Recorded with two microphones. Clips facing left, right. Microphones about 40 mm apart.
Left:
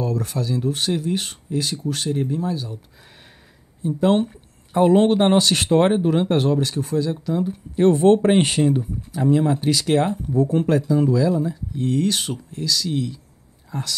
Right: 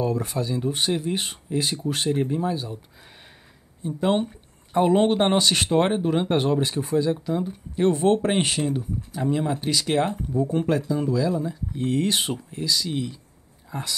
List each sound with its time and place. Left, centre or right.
0.0 s speech: centre
3.8 s speech: centre
11.7 s speech: centre